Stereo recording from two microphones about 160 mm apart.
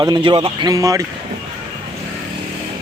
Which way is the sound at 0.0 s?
25° right (ahead or behind).